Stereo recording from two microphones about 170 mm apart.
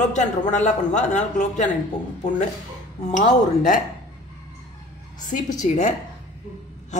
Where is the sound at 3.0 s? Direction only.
45° left (ahead or behind).